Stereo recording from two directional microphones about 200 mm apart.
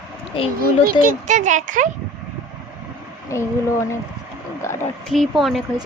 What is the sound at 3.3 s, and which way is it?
Speech, 15° left (ahead or behind).